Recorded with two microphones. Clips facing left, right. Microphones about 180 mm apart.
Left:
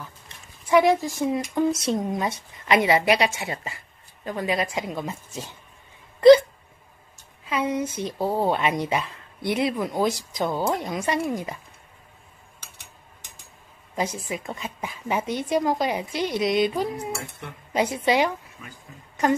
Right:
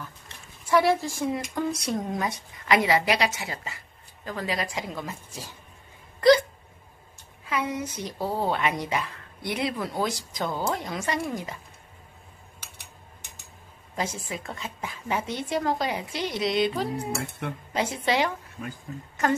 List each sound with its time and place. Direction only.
0.7 s speech: 15° left (ahead or behind)
7.4 s a child's voice: 20° left (ahead or behind)
13.9 s speech: 15° left (ahead or behind)